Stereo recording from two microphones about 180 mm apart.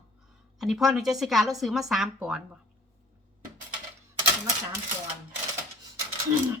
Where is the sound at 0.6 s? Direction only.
Centre (ahead or behind).